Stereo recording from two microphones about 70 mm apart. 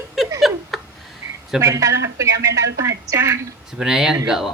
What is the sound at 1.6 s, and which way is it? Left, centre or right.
A woman's voice, right.